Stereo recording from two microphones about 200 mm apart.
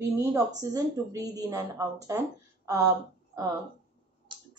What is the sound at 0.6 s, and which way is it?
Speech, 20° right (ahead or behind).